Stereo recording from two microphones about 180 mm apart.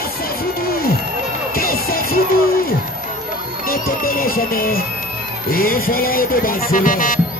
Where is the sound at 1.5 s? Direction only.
55° left (ahead or behind).